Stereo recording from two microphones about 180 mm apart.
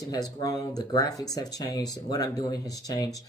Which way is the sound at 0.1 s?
20° left (ahead or behind).